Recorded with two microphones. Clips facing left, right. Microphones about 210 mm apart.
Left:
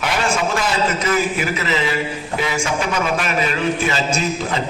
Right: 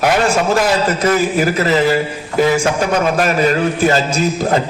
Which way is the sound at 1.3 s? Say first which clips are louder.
Right 7 dB; 40° right (ahead or behind).